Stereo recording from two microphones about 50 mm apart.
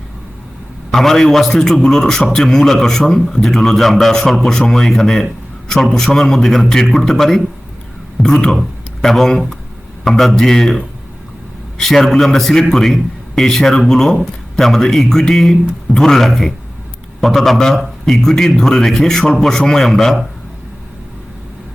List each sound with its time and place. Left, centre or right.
0.9 s a man's voice: centre